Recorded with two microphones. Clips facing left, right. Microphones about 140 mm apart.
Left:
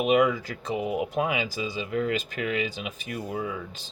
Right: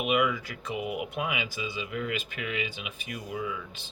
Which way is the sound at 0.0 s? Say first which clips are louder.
Left 5 dB; 35° left (ahead or behind).